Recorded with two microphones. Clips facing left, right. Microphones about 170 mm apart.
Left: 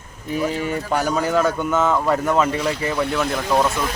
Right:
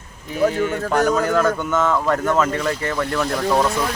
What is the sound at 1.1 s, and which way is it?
Speech, 10° left (ahead or behind).